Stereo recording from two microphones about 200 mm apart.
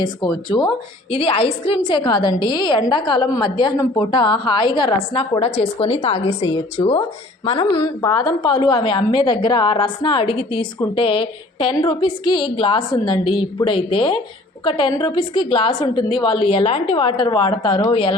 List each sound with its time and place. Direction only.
0.0 s a woman's voice: 20° left (ahead or behind)